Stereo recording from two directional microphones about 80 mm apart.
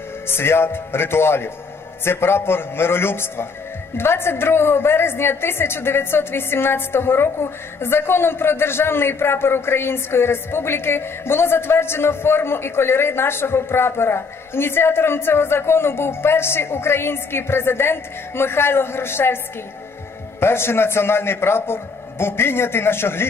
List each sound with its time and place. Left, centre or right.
0.3 s a woman's voice: left